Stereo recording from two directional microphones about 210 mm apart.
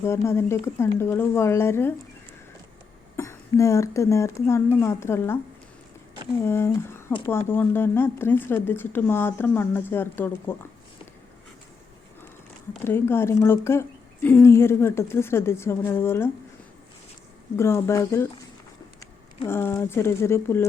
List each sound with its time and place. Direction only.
0.0 s speech: 10° left (ahead or behind)
3.2 s speech: 15° left (ahead or behind)
6.4 s speech: 10° left (ahead or behind)
12.8 s speech: 10° left (ahead or behind)
17.6 s speech: 10° left (ahead or behind)